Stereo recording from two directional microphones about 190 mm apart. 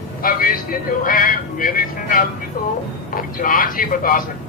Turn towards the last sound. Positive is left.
turn(degrees=45)  # may be behind; listen again after turning